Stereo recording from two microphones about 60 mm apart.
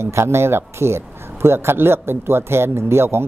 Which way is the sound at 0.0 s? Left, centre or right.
Right.